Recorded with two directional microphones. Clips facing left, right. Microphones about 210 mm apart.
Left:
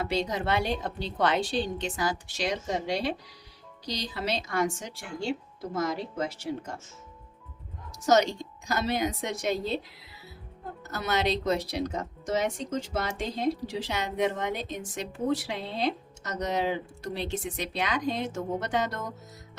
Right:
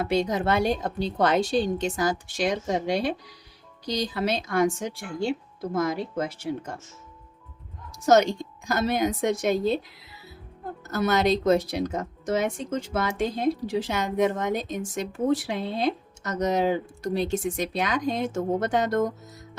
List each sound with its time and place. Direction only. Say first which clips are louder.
0.0 s speech: right 5 dB; 50° right (ahead or behind)
8.0 s speech: right 4 dB; 50° right (ahead or behind)
10.9 s speech: right 6 dB; 45° right (ahead or behind)